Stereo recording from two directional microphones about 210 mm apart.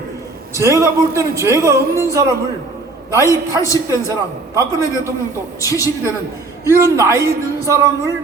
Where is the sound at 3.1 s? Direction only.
15° left (ahead or behind).